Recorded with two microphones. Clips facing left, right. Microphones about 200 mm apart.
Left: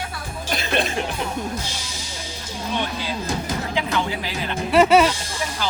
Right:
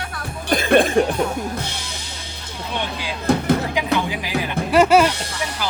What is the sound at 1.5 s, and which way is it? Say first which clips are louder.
Speech: right 2 dB; 60° right (ahead or behind).